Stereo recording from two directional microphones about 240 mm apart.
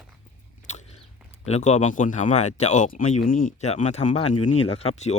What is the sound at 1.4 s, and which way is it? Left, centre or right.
Speech, left.